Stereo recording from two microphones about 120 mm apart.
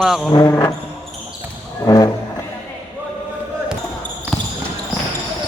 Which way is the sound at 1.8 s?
30° left (ahead or behind).